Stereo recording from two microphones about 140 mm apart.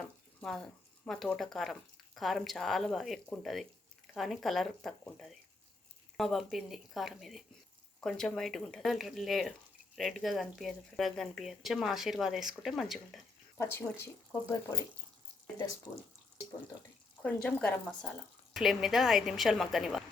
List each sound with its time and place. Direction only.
0.0 s speech: 5° left (ahead or behind)
13.8 s speech: 15° left (ahead or behind)
15.9 s speech: 15° left (ahead or behind)
17.2 s speech: 5° left (ahead or behind)